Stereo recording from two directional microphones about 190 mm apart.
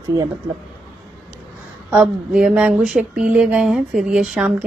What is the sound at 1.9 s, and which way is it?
A woman's voice, 5° right (ahead or behind).